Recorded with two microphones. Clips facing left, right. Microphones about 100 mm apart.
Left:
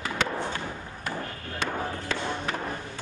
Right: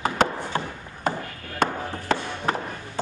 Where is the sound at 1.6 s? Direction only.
50° right (ahead or behind).